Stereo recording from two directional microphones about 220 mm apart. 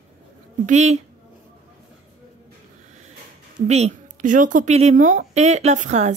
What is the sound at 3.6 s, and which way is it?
Speech, 30° right (ahead or behind).